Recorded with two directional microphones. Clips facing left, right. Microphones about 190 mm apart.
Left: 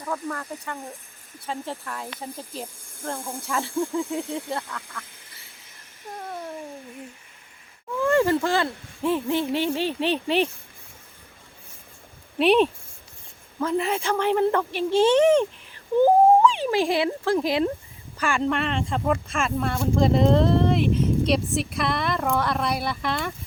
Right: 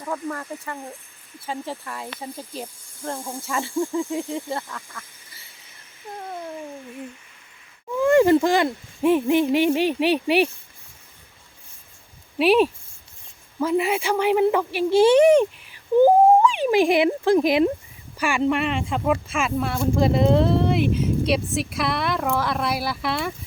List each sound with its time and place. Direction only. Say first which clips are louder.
0.1 s speech: right 1 dB; centre (ahead or behind)
4.7 s duck: left 1 dB; centre (ahead or behind)
7.9 s speech: right 5 dB; 15° right (ahead or behind)
12.4 s a woman's voice: right 1 dB; 5° right (ahead or behind)